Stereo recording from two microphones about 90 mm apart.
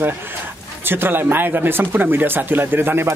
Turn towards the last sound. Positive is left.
turn(degrees=-25)  # may be behind; listen again after turning